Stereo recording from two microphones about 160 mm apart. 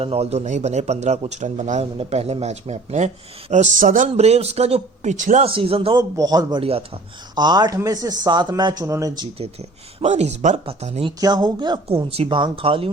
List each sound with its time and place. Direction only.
0.0 s speech: 40° right (ahead or behind)
5.5 s a man's voice: 35° right (ahead or behind)
9.4 s speech: 40° right (ahead or behind)
11.2 s speech: 25° right (ahead or behind)